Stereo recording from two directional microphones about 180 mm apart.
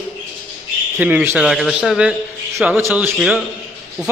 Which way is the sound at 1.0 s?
10° right (ahead or behind).